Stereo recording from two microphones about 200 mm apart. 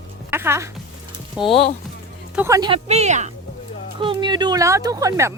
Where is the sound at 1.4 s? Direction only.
30° left (ahead or behind).